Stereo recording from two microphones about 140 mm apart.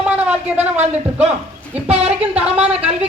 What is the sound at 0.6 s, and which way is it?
A man's voice, 50° right (ahead or behind).